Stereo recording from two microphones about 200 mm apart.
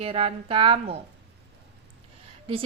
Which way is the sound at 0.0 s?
30° right (ahead or behind).